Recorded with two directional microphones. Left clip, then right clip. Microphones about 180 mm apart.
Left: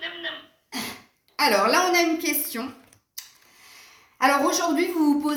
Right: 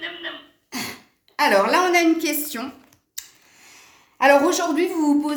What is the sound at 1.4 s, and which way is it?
A woman's voice, 55° right (ahead or behind).